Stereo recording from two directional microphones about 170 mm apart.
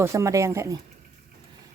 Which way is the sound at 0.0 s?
15° right (ahead or behind).